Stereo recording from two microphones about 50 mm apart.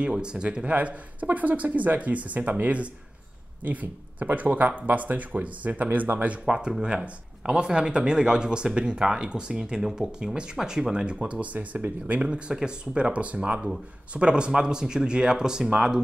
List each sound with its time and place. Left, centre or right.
0.0 s speech: centre
0.7 s speech: right
6.4 s speech: centre